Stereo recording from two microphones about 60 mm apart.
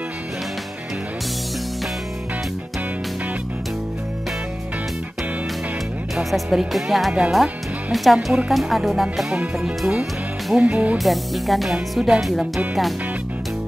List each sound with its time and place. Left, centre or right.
6.1 s speech: centre
9.4 s speech: centre
11.0 s speech: centre